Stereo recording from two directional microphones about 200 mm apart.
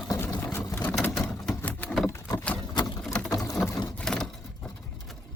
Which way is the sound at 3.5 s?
Centre (ahead or behind).